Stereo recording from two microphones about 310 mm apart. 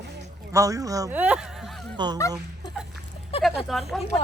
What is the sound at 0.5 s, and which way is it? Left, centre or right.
Speech, centre.